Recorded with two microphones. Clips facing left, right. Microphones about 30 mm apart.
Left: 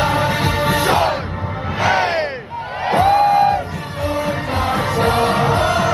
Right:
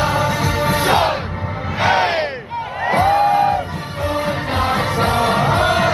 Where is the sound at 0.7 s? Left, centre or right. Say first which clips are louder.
Right 1 dB; right.